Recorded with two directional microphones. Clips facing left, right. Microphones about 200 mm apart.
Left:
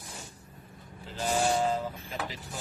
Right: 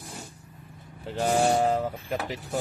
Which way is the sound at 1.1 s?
60° right (ahead or behind).